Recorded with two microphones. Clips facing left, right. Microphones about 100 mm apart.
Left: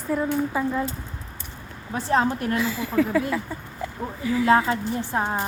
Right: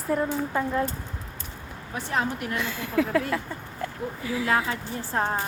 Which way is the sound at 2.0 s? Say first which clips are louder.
Left 6 dB; 35° left (ahead or behind).